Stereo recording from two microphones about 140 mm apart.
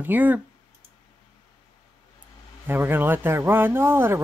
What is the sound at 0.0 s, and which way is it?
Speech, 10° right (ahead or behind).